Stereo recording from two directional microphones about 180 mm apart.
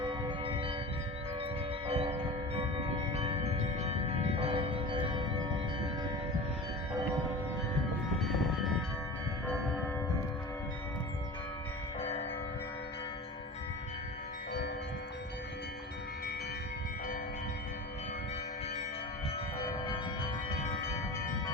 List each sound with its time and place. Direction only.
0.0 s church bell: 30° right (ahead or behind)
1.9 s church bell: 35° right (ahead or behind)